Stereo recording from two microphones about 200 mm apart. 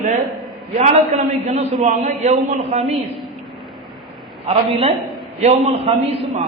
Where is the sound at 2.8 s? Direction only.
Centre (ahead or behind).